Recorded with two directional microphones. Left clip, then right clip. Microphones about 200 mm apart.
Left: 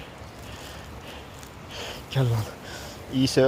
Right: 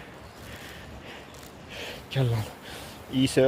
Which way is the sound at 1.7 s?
5° left (ahead or behind).